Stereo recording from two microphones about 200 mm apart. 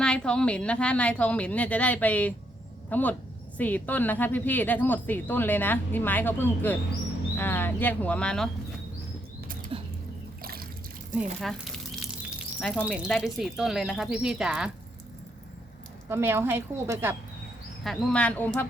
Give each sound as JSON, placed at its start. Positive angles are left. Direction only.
{"t": 0.0, "sound": "a woman's voice", "side_deg": 5}
{"t": 9.7, "sound": "a sound", "side_deg": -25}
{"t": 10.4, "sound": "trickle", "side_deg": -50}
{"t": 11.1, "sound": "speech", "side_deg": -5}
{"t": 16.0, "sound": "a woman's voice", "side_deg": -10}
{"t": 17.8, "sound": "speech", "side_deg": 5}